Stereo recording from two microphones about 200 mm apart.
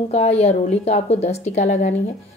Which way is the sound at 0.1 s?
30° left (ahead or behind).